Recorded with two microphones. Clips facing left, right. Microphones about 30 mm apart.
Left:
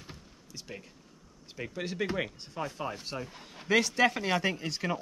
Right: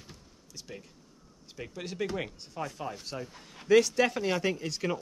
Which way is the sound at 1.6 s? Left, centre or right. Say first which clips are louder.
Left 1 dB; centre.